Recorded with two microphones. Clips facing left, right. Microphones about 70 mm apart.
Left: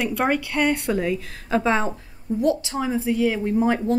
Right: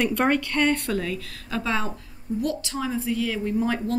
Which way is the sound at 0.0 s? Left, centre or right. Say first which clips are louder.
Even; centre.